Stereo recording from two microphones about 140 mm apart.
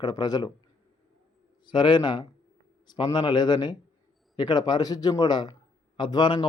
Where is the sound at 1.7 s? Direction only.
30° left (ahead or behind).